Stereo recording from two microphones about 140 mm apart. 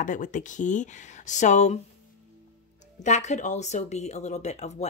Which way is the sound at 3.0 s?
60° left (ahead or behind).